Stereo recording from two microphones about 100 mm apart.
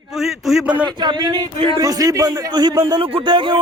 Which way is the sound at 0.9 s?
50° right (ahead or behind).